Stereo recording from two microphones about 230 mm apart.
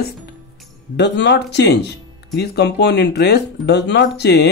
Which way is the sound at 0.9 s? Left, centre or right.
Left.